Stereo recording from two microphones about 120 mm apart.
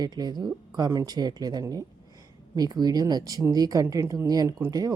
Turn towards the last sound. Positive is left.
turn(degrees=-30)  # may be behind; listen again after turning